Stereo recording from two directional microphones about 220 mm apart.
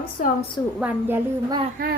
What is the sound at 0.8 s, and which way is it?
Speech, 5° right (ahead or behind).